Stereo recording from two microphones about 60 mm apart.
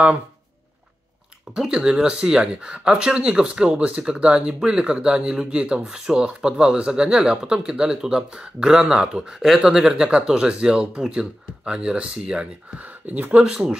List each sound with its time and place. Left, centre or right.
1.7 s speech: centre
13.3 s speech: centre